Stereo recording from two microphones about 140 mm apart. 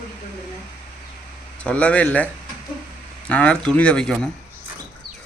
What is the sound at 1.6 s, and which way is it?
Speech, 10° left (ahead or behind).